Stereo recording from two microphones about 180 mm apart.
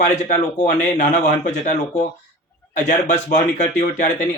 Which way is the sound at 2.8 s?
45° left (ahead or behind).